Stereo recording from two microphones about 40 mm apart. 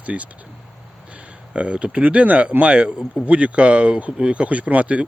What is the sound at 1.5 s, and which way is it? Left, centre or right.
Speech, right.